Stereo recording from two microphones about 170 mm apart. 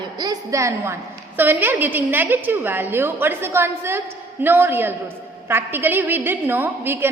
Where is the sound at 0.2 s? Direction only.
20° right (ahead or behind).